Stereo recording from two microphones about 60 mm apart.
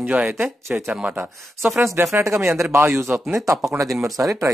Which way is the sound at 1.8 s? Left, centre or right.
Right.